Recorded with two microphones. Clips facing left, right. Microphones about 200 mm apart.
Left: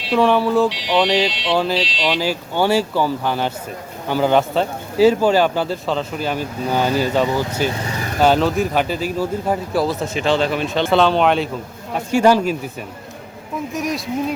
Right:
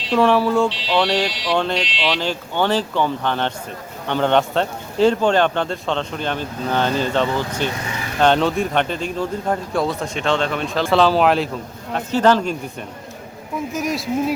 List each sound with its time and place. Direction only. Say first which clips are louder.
0.1 s speech: even; centre (ahead or behind)
0.7 s speech: left 2 dB; 15° left (ahead or behind)
1.3 s a sound: left 1 dB; 25° left (ahead or behind)
1.5 s speech: left 1 dB; 5° left (ahead or behind)
11.9 s speech: left 2 dB; 10° left (ahead or behind)
13.7 s speech: right 1 dB; centre (ahead or behind)